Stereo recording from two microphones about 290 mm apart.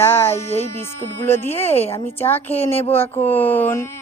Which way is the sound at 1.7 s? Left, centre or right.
Left.